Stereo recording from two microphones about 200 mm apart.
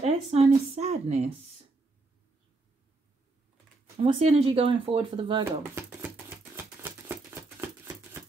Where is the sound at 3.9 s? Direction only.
30° right (ahead or behind).